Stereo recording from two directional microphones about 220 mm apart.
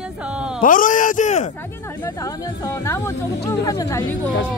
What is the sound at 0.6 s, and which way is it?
Speech, 40° left (ahead or behind).